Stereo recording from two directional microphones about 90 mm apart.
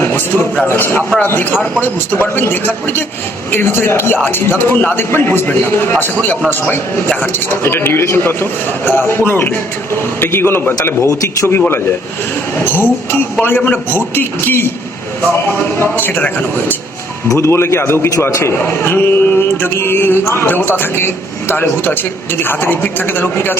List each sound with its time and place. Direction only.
0.0 s a sound: 25° left (ahead or behind)
0.7 s a man's voice: 25° left (ahead or behind)
15.8 s a man's voice: 20° left (ahead or behind)
17.2 s a man's voice: 30° left (ahead or behind)